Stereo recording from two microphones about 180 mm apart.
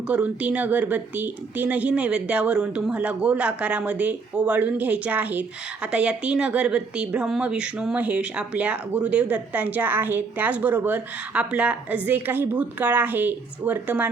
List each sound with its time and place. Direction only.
0.1 s speech: 5° right (ahead or behind)